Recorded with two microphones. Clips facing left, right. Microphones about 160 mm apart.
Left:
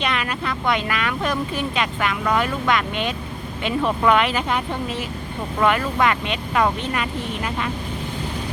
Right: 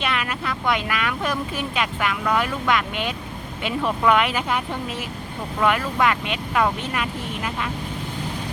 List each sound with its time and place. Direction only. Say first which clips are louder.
0.0 s speech: left 1 dB; 5° right (ahead or behind)